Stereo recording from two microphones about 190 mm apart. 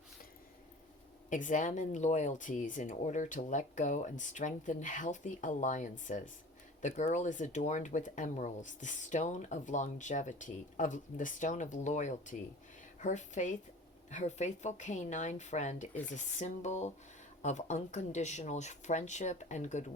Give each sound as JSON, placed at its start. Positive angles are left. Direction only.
{"t": 1.3, "sound": "speech", "side_deg": 40}